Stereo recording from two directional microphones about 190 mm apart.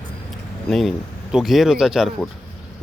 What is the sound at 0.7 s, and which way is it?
Speech, centre (ahead or behind).